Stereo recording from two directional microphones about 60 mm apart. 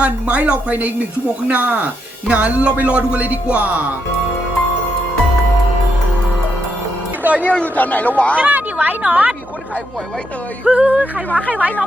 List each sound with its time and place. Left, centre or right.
0.0 s speech: right
7.3 s speech: right
7.6 s speech: left
8.4 s speech: right
10.7 s speech: right
11.3 s speech: left
11.5 s speech: right